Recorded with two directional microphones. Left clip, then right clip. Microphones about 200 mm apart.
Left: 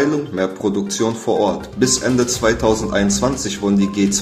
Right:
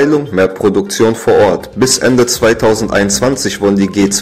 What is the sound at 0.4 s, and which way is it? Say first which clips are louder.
Speech: right 9 dB; 40° right (ahead or behind).